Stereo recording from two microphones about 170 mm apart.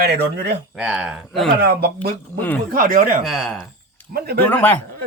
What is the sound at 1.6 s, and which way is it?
Speech, 70° right (ahead or behind).